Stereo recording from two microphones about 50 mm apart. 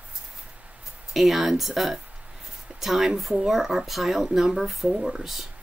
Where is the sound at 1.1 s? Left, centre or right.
Centre.